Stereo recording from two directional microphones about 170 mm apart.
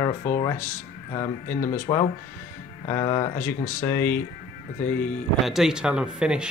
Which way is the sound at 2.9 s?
20° left (ahead or behind).